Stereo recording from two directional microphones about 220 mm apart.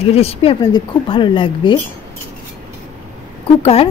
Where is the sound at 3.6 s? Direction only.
25° left (ahead or behind).